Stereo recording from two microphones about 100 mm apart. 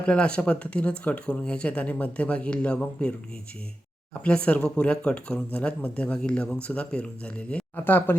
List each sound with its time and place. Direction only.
0.0 s speech: 10° left (ahead or behind)
4.2 s speech: 10° left (ahead or behind)